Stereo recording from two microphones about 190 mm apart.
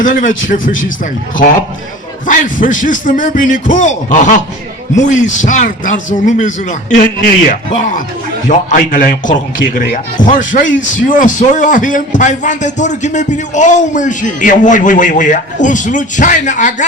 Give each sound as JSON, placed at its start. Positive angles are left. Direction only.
{"t": 0.0, "sound": "a man's voice", "side_deg": 45}
{"t": 0.7, "sound": "speech", "side_deg": 90}
{"t": 2.2, "sound": "a man's voice", "side_deg": 45}